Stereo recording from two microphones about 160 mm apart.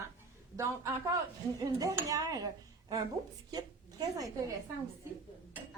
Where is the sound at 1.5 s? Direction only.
20° right (ahead or behind).